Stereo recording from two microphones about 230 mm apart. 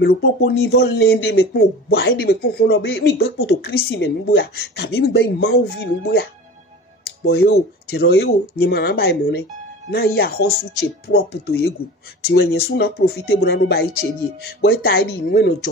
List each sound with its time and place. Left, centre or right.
0.0 s speech: left
7.2 s speech: left